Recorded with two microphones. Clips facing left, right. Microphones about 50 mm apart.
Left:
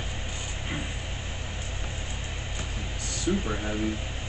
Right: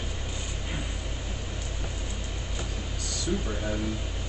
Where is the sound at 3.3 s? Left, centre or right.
Left.